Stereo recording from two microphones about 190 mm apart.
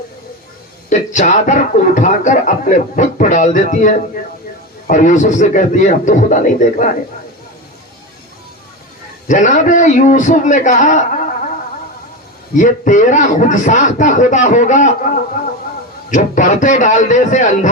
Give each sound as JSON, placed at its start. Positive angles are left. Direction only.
{"t": 0.9, "sound": "speech", "side_deg": 40}
{"t": 9.2, "sound": "speech", "side_deg": 40}
{"t": 12.5, "sound": "speech", "side_deg": 40}